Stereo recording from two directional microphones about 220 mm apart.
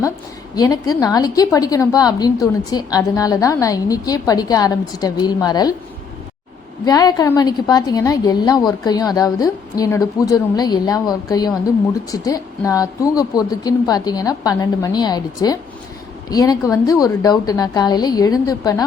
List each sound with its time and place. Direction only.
0.5 s a woman's voice: 15° left (ahead or behind)
6.8 s a woman's voice: 15° left (ahead or behind)